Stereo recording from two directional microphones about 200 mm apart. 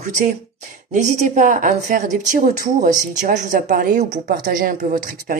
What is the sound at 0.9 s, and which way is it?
Speech, 35° right (ahead or behind).